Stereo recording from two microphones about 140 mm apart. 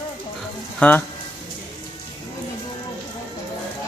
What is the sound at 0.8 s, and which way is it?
Speech, 10° left (ahead or behind).